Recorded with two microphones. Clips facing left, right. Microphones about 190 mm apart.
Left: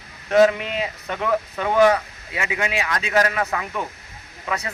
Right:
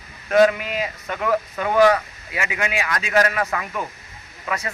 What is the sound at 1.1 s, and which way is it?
Speech, 5° right (ahead or behind).